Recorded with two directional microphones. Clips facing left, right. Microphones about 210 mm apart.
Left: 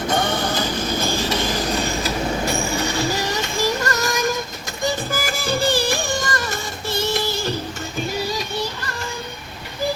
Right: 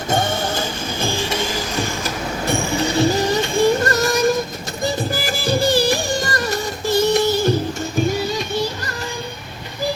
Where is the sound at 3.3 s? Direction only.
30° right (ahead or behind); by 7.5 s 45° right (ahead or behind).